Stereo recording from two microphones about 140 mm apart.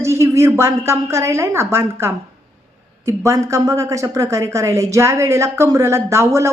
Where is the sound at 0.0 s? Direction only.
20° right (ahead or behind).